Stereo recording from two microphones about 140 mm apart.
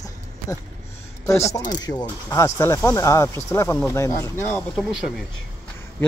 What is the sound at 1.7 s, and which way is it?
A man's voice, 25° left (ahead or behind).